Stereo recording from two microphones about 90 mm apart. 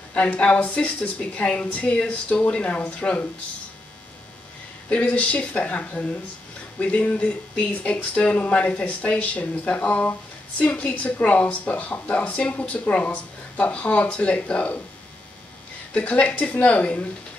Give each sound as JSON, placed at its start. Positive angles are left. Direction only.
{"t": 0.1, "sound": "speech", "side_deg": 15}
{"t": 4.8, "sound": "speech", "side_deg": 15}
{"t": 15.9, "sound": "speech", "side_deg": 15}